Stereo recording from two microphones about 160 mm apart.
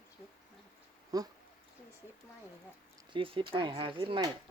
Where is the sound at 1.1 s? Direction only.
25° right (ahead or behind).